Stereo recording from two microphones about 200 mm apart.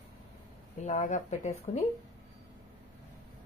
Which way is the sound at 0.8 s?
35° left (ahead or behind).